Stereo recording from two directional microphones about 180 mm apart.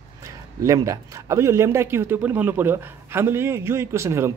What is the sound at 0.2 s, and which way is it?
A man's voice, 15° right (ahead or behind).